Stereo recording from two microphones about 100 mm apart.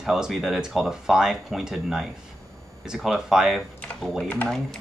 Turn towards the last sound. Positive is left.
turn(degrees=10)  # may be behind; listen again after turning